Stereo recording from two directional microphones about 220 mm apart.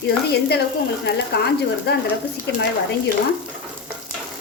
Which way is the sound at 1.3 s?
50° left (ahead or behind).